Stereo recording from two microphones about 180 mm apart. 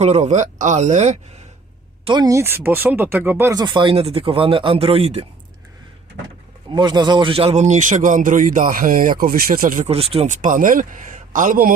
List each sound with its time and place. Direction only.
0.0 s speech: 40° right (ahead or behind)
2.0 s speech: 20° right (ahead or behind)
6.7 s a man's voice: 25° right (ahead or behind); by 11.7 s 50° right (ahead or behind)